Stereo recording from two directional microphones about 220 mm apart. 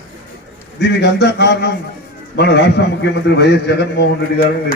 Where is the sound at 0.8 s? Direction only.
50° left (ahead or behind).